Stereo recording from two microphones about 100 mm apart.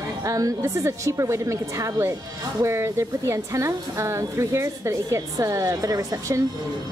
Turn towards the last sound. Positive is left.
turn(degrees=-30)  # may be behind; listen again after turning